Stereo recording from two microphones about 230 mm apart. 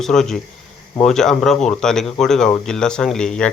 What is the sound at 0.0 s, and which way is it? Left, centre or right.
Speech, centre.